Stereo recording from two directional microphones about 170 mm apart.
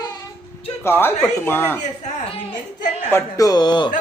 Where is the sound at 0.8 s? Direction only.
15° left (ahead or behind).